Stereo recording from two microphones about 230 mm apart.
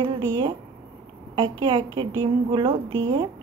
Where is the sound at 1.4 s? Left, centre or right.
Right.